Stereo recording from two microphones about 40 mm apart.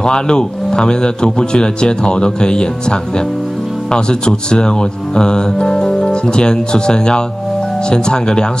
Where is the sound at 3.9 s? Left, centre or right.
Left.